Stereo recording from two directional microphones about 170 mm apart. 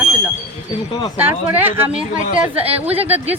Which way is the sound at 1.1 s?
10° right (ahead or behind).